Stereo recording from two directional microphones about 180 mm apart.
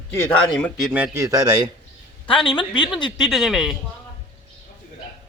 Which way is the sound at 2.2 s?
25° left (ahead or behind).